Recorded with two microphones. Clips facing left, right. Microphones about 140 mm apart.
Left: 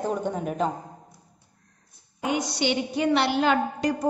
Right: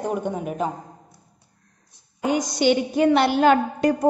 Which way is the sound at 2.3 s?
45° right (ahead or behind).